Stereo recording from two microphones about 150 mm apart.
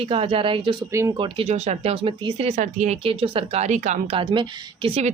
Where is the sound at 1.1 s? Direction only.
35° right (ahead or behind); by 2.9 s 50° right (ahead or behind).